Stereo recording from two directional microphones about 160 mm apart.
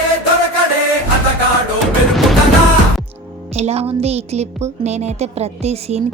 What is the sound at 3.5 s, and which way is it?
A woman's voice, 40° right (ahead or behind).